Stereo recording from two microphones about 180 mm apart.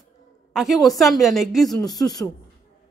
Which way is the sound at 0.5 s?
Centre (ahead or behind).